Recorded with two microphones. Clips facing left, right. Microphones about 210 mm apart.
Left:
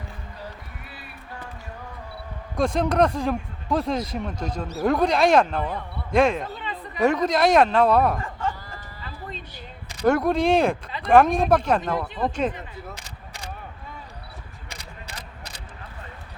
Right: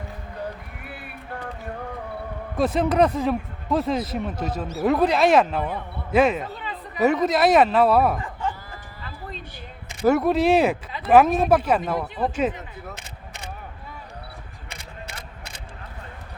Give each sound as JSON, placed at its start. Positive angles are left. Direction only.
{"t": 0.9, "sound": "music", "side_deg": -55}
{"t": 2.6, "sound": "speech", "side_deg": -5}
{"t": 8.2, "sound": "chicken", "side_deg": -15}
{"t": 10.0, "sound": "speech", "side_deg": -5}